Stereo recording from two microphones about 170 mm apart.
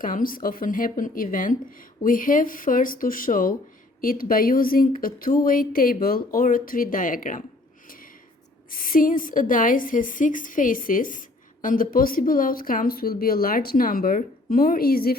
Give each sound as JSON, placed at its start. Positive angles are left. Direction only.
{"t": 0.0, "sound": "a woman's voice", "side_deg": 55}
{"t": 7.9, "sound": "a sound", "side_deg": 55}
{"t": 8.7, "sound": "a woman's voice", "side_deg": 55}